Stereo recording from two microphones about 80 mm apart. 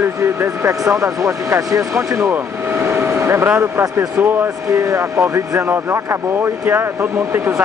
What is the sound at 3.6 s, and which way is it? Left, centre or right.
Speech, right.